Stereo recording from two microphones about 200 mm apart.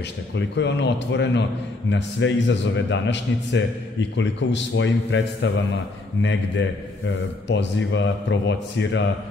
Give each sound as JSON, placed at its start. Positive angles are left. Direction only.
{"t": 0.4, "sound": "a man's voice", "side_deg": 60}